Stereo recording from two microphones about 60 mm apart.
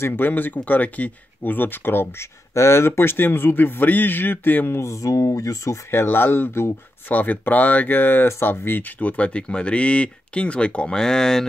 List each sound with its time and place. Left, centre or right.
0.0 s a man's voice: left
2.5 s a man's voice: left
4.7 s speech: left
5.9 s a man's voice: left
7.1 s speech: left; by 11.4 s centre